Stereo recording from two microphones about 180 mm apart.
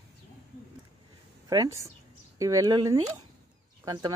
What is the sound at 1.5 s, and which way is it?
Speech, 20° right (ahead or behind).